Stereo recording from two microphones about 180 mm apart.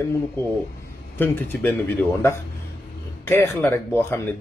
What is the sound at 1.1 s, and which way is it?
Speech, 10° left (ahead or behind).